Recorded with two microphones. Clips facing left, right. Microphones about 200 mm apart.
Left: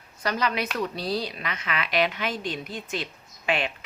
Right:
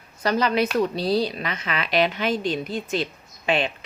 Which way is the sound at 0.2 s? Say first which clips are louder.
Right 6 dB; 30° right (ahead or behind).